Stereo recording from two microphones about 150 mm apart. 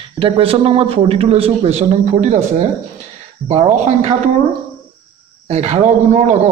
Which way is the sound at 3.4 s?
50° right (ahead or behind).